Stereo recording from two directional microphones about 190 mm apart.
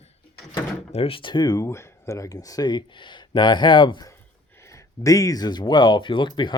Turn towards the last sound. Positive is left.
turn(degrees=25)  # may be behind; listen again after turning